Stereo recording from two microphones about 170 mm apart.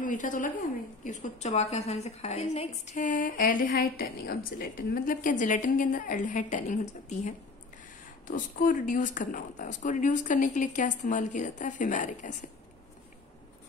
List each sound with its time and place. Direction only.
0.0 s a woman's voice: 50° left (ahead or behind)